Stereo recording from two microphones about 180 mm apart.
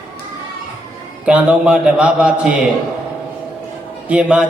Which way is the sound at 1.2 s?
5° right (ahead or behind).